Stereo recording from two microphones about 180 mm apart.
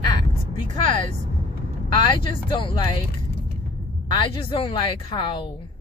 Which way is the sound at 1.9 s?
25° left (ahead or behind).